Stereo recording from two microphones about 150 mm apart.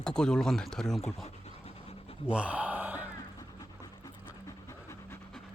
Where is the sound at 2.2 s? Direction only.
5° right (ahead or behind).